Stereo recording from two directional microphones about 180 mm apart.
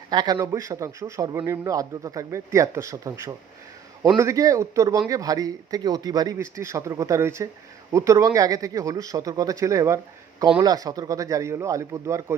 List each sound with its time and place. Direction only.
0.1 s speech: 20° right (ahead or behind)